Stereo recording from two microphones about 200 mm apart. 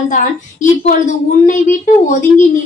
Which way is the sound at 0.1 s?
40° left (ahead or behind).